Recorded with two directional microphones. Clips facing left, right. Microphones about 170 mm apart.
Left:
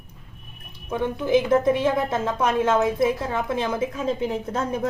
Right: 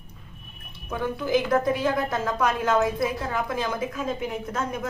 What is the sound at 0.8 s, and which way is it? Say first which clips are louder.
Speech: left 3 dB; 20° left (ahead or behind).